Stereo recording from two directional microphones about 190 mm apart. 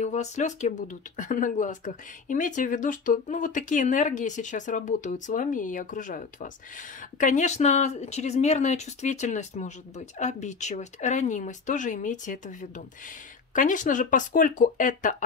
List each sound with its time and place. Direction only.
0.0 s speech: 35° left (ahead or behind)